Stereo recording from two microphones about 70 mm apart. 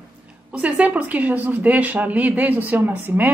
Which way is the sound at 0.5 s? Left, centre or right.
Centre.